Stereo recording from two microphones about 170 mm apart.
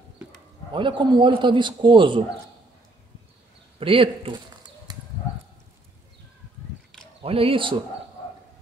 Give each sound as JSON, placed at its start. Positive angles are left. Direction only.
{"t": 0.7, "sound": "a man's voice", "side_deg": -30}
{"t": 3.8, "sound": "a sound", "side_deg": -30}
{"t": 7.2, "sound": "speech", "side_deg": -35}